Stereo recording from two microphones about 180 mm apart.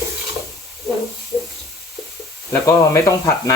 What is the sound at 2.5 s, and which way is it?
Speech, 15° left (ahead or behind).